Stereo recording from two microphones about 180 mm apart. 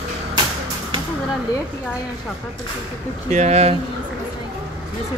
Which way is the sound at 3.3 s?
40° right (ahead or behind).